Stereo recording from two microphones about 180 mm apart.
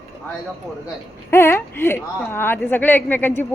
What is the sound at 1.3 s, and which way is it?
Speech, 15° left (ahead or behind).